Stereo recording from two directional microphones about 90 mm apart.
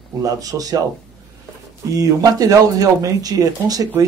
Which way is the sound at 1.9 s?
40° right (ahead or behind).